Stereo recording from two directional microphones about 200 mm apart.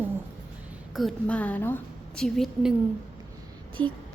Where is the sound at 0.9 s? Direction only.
5° left (ahead or behind).